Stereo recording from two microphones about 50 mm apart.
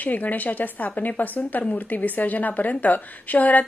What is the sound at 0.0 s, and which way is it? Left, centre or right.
A woman's voice, left.